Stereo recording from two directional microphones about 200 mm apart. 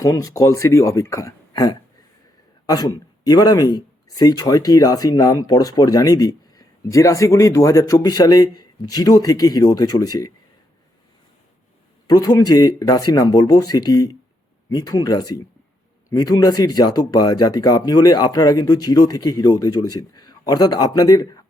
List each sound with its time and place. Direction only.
0.0 s speech: 15° left (ahead or behind)
12.0 s speech: 20° left (ahead or behind)